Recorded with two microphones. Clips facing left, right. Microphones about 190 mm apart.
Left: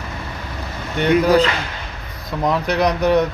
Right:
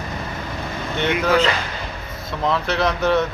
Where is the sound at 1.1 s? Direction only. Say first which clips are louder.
Left 5 dB; 35° left (ahead or behind).